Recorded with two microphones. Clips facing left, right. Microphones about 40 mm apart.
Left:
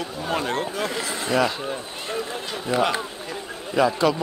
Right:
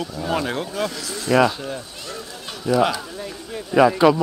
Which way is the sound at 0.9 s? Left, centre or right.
Left.